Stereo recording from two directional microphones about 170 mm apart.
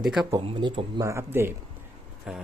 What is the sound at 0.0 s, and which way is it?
Speech, centre (ahead or behind).